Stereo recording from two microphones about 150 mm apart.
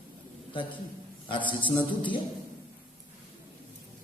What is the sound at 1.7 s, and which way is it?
Music, 35° left (ahead or behind).